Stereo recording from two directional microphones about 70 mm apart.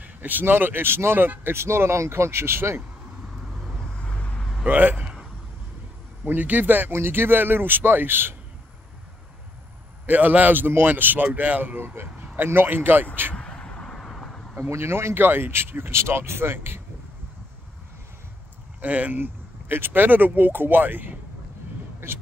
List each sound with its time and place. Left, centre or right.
0.0 s speech: right
3.6 s vehicle: centre
4.6 s speech: right
6.2 s a man's voice: right
10.0 s a man's voice: right
13.3 s vehicle: centre
14.7 s speech: right
18.8 s a man's voice: right